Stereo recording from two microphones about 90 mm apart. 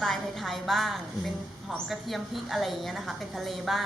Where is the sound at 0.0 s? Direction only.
Centre (ahead or behind).